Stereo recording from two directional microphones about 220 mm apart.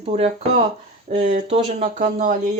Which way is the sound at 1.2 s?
35° right (ahead or behind).